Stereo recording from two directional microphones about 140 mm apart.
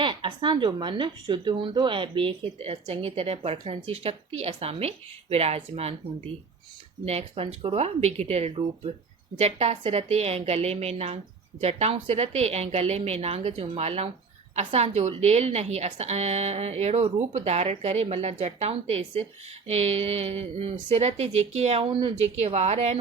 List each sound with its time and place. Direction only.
0.0 s a woman's voice: 35° right (ahead or behind)
7.0 s a woman's voice: 50° right (ahead or behind)
22.2 s a woman's voice: 50° right (ahead or behind)